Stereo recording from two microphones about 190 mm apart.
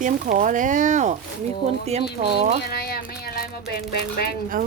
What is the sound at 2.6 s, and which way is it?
Music, 55° left (ahead or behind).